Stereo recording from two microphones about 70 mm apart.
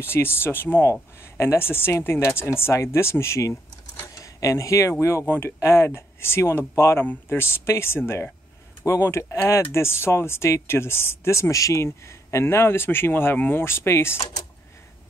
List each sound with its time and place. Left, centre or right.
0.0 s speech: left
5.2 s speech: left
5.6 s speech: left
9.0 s speech: left